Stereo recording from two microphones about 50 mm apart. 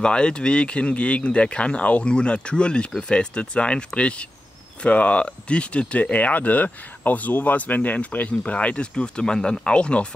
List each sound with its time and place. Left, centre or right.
0.0 s speech: centre